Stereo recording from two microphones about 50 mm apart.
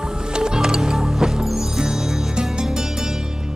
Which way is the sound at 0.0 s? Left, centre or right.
Centre.